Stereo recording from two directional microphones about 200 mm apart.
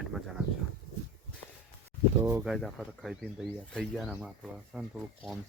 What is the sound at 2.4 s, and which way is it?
Speech, centre (ahead or behind).